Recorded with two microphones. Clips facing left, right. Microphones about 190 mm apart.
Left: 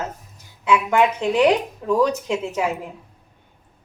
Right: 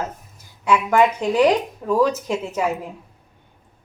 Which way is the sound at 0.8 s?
10° right (ahead or behind).